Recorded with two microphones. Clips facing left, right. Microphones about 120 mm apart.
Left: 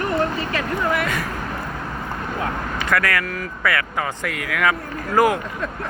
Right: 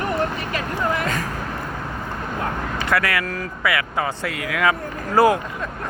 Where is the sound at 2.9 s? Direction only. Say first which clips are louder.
Even; 25° right (ahead or behind).